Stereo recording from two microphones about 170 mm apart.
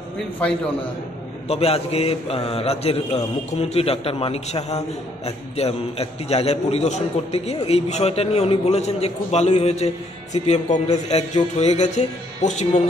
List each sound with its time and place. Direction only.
1.5 s speech: 35° left (ahead or behind)